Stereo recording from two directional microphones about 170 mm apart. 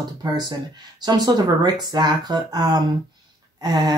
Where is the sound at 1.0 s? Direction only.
25° right (ahead or behind).